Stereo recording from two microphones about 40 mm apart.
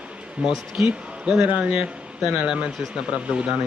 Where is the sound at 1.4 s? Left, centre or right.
Right.